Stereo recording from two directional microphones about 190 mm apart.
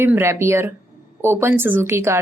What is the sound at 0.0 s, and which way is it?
Speech, 15° right (ahead or behind).